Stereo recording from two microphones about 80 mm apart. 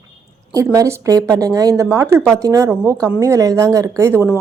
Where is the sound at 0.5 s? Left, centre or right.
Right.